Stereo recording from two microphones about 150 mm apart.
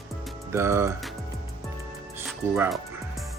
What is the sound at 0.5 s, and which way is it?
Speech, 15° right (ahead or behind).